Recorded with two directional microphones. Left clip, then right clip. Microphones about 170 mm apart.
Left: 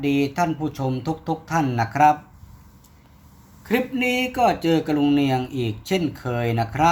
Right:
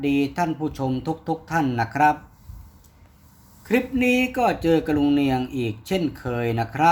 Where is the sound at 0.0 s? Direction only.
5° right (ahead or behind).